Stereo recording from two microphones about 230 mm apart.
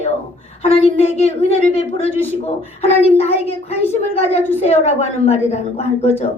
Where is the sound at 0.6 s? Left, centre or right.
Left.